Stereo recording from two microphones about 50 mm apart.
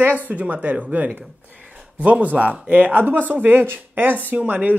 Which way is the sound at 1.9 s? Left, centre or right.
Right.